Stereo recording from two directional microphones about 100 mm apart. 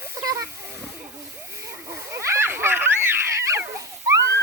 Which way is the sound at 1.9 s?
25° right (ahead or behind).